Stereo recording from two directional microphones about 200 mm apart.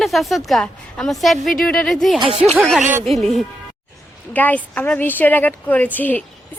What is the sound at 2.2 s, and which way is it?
Speech, 30° right (ahead or behind).